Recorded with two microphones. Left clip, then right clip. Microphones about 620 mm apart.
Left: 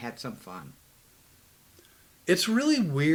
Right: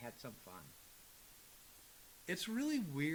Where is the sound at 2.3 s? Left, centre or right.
Centre.